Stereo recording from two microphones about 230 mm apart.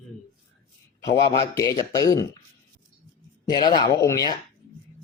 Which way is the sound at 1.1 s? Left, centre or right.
Left.